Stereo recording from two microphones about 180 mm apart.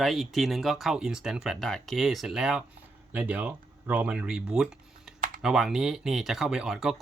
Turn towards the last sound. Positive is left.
turn(degrees=0)  # may be behind; listen again after turning